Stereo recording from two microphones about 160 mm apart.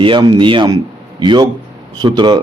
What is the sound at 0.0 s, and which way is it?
A man's voice, 30° right (ahead or behind).